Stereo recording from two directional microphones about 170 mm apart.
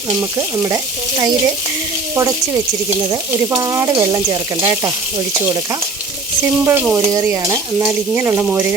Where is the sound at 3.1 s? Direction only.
20° right (ahead or behind).